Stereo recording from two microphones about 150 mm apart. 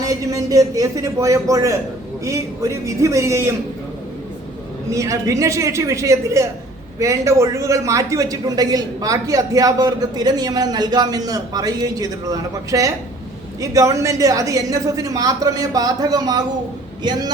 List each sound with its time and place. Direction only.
0.0 s speech: 20° right (ahead or behind)
4.9 s speech: 20° right (ahead or behind)